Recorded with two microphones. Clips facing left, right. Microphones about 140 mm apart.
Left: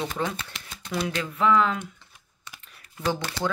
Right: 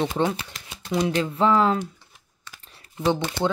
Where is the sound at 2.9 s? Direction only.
20° right (ahead or behind).